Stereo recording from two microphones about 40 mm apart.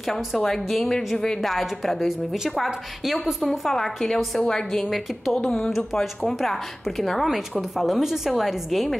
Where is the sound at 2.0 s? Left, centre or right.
Centre.